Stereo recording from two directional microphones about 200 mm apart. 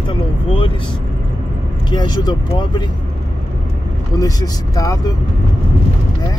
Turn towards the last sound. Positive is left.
turn(degrees=20)  # may be behind; listen again after turning